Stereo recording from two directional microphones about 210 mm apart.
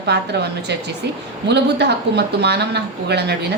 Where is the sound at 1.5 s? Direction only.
55° right (ahead or behind).